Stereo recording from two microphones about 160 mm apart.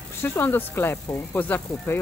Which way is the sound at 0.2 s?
15° left (ahead or behind).